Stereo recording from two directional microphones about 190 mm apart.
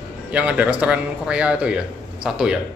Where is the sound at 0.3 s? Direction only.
5° right (ahead or behind).